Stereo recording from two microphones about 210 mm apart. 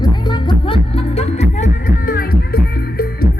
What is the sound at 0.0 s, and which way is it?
Music, 20° left (ahead or behind).